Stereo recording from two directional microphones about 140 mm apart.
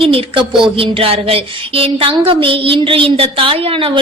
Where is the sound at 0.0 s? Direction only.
40° right (ahead or behind).